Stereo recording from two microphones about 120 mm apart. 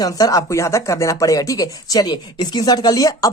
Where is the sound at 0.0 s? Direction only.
30° left (ahead or behind).